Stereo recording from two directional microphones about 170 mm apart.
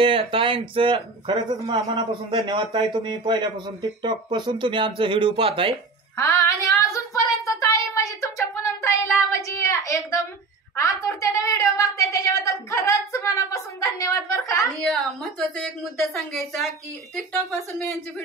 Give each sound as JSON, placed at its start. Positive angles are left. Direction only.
{"t": 0.0, "sound": "speech", "side_deg": -30}
{"t": 6.1, "sound": "a sound", "side_deg": 15}
{"t": 10.8, "sound": "a woman's voice", "side_deg": 15}
{"t": 14.8, "sound": "a woman's voice", "side_deg": 0}